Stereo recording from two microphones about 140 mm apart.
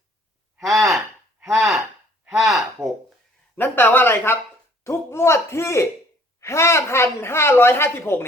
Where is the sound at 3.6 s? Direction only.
15° left (ahead or behind).